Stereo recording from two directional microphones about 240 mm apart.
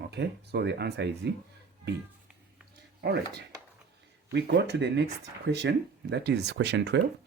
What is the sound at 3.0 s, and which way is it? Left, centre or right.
Speech, right.